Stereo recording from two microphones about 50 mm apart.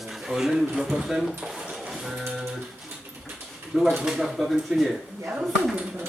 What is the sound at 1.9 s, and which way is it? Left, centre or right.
Music, centre.